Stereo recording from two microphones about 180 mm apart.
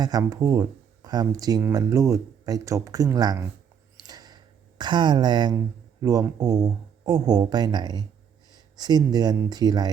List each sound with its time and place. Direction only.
0.0 s speech: 20° right (ahead or behind)
3.9 s a sound: 20° right (ahead or behind)
6.0 s speech: 20° right (ahead or behind)